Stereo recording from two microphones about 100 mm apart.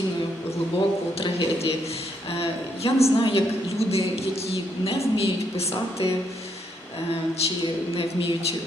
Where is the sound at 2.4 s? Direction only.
75° left (ahead or behind).